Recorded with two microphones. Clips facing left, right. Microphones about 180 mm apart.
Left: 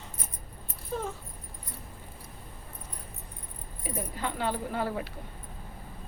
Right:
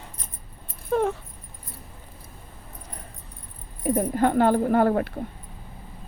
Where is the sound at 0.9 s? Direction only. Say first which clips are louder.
Right 11 dB; 65° right (ahead or behind).